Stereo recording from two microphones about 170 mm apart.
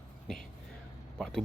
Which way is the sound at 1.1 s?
5° left (ahead or behind).